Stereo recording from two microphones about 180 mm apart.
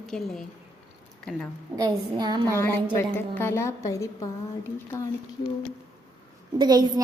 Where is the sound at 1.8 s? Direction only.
20° right (ahead or behind).